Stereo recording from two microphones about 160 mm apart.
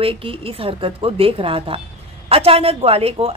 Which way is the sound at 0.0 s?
35° right (ahead or behind).